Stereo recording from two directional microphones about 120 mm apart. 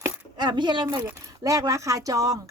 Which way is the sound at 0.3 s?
40° right (ahead or behind).